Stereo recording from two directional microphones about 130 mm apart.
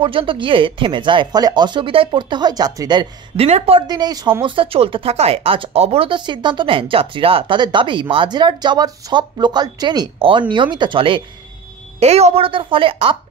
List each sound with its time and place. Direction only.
0.0 s speech: 40° right (ahead or behind)
3.3 s a woman's voice: 55° right (ahead or behind)
3.8 s speech: 30° right (ahead or behind)
4.3 s speech: 40° right (ahead or behind)
10.1 s a woman's voice: 45° right (ahead or behind)
12.0 s a woman's voice: 55° right (ahead or behind)